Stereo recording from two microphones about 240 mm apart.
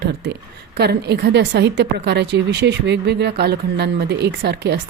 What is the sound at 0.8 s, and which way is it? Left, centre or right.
A woman's voice, right.